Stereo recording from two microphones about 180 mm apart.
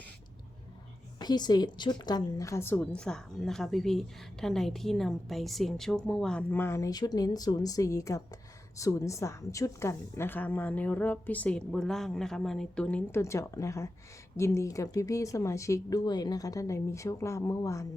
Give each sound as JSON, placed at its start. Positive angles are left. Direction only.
{"t": 1.2, "sound": "a woman's voice", "side_deg": 20}